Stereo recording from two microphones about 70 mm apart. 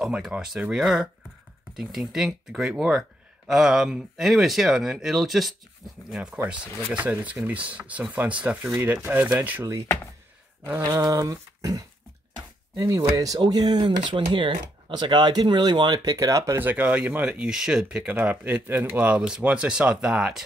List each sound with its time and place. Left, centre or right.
0.0 s speech: centre
6.4 s speech: centre
8.7 s speech: right
10.8 s speech: right
16.5 s speech: right; by 17.8 s centre
17.8 s speech: right
19.0 s speech: centre